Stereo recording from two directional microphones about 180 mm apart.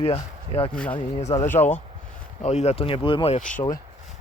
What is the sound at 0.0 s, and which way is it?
Speech, 30° left (ahead or behind).